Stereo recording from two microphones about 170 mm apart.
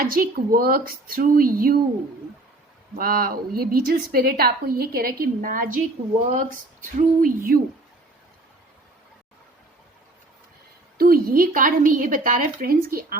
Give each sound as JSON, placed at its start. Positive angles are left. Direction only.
{"t": 0.0, "sound": "a woman's voice", "side_deg": -60}
{"t": 2.9, "sound": "a woman's voice", "side_deg": -60}
{"t": 6.2, "sound": "a sound", "side_deg": -50}
{"t": 10.9, "sound": "a woman's voice", "side_deg": -60}